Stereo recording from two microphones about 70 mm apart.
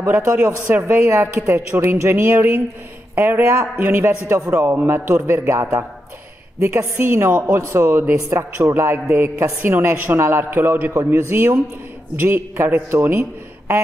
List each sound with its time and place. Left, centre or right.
0.0 s a man's voice: right
0.7 s a woman's voice: right
1.0 s a man's voice: right
4.6 s a woman's voice: right
4.8 s a man's voice: right